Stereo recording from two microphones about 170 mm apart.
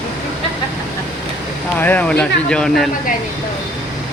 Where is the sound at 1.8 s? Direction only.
10° left (ahead or behind).